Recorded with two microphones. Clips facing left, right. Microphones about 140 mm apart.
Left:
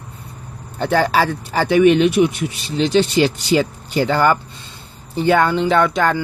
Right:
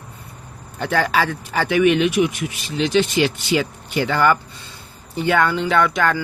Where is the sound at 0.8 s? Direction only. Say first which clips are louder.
Left 3 dB; 30° left (ahead or behind).